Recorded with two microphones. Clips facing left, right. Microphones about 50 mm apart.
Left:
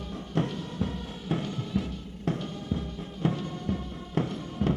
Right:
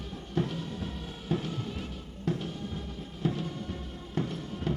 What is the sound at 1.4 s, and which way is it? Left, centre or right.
Music, centre.